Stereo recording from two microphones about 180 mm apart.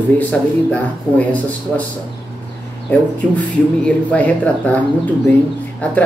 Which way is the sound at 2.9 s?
5° left (ahead or behind).